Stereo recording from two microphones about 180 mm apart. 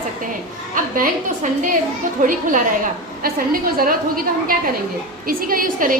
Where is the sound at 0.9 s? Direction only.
45° right (ahead or behind).